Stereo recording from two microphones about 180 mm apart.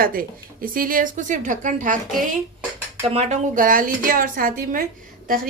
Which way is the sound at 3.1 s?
45° right (ahead or behind).